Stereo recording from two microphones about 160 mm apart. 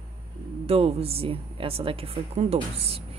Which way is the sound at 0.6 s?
40° right (ahead or behind).